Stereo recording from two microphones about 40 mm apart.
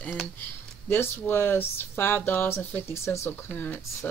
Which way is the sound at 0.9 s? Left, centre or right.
Left.